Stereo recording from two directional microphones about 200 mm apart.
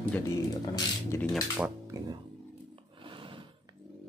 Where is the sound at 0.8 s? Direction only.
15° left (ahead or behind).